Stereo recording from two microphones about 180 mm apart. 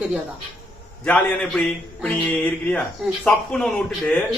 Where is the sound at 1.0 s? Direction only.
5° left (ahead or behind).